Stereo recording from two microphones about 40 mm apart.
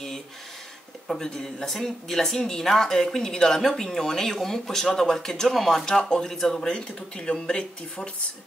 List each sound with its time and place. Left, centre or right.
1.2 s speech: centre
5.9 s speech: centre
7.2 s speech: left